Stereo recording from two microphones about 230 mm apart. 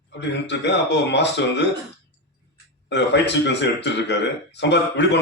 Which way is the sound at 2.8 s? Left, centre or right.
Left.